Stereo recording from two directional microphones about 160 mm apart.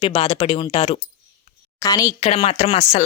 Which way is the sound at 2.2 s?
40° left (ahead or behind).